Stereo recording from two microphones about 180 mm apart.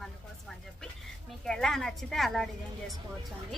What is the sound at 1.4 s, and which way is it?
A woman's voice, 5° left (ahead or behind).